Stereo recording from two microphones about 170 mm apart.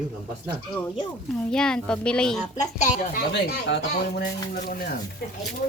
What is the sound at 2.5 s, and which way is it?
Speech, 45° left (ahead or behind).